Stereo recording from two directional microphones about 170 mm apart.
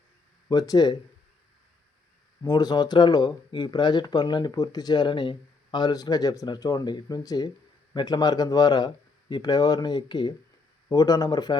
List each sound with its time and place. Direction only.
0.4 s speech: 20° left (ahead or behind)
2.4 s speech: 25° left (ahead or behind)